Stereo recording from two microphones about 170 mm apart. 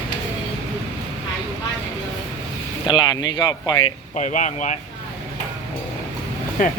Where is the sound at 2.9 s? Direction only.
25° left (ahead or behind).